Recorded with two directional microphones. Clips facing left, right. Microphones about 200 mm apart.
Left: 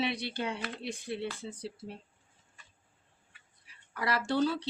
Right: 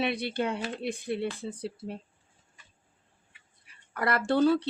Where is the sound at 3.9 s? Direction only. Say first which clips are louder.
Right 4 dB; 55° right (ahead or behind).